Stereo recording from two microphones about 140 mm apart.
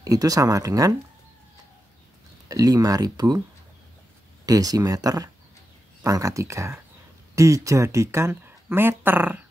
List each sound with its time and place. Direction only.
0.0 s speech: 25° right (ahead or behind)
2.4 s speech: 25° right (ahead or behind)
4.5 s speech: 25° right (ahead or behind)